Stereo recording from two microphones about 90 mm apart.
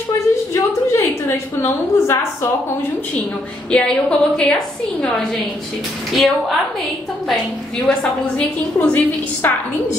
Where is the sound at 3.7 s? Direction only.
10° left (ahead or behind).